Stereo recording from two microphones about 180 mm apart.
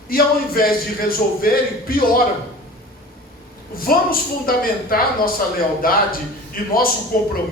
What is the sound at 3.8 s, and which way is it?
A man's voice, 55° left (ahead or behind).